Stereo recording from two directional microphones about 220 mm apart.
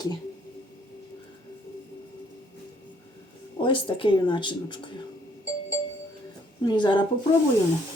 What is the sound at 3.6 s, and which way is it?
Speech, 20° left (ahead or behind).